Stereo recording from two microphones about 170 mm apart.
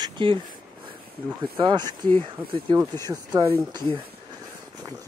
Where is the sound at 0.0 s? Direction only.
30° right (ahead or behind).